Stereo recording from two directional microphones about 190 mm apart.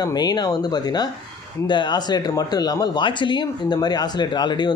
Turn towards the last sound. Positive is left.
turn(degrees=20)  # may be behind; listen again after turning